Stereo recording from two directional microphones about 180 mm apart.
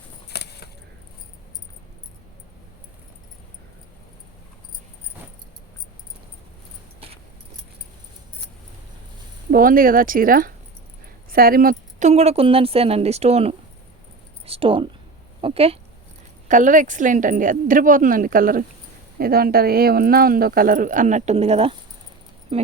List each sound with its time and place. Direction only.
0.3 s keys jangling: 65° left (ahead or behind)
9.5 s speech: 50° right (ahead or behind); by 15.8 s 35° right (ahead or behind)
16.5 s speech: 45° right (ahead or behind)